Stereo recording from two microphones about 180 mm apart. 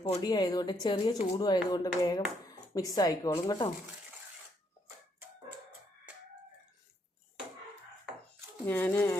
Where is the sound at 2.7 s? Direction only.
20° left (ahead or behind).